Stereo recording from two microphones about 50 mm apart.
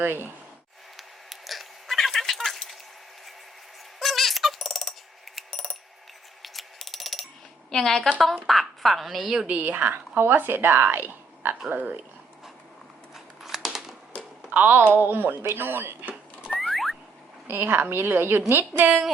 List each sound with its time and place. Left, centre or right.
0.0 s a woman's voice: right
0.9 s cat: centre
4.0 s coin: centre
5.5 s a sound: centre
6.4 s mechanisms: centre
7.7 s a woman's voice: centre
9.3 s speech: centre
9.6 s a woman's voice: right
10.2 s a woman's voice: right
13.1 s scissors: centre
14.5 s a woman's voice: right
16.5 s a sound: centre
17.4 s a woman's voice: right